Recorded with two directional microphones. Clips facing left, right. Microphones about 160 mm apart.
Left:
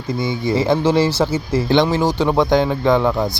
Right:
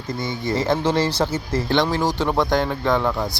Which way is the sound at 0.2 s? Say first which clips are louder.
Left 5 dB; 10° left (ahead or behind).